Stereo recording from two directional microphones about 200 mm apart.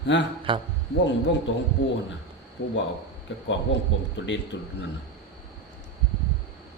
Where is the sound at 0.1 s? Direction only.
65° left (ahead or behind).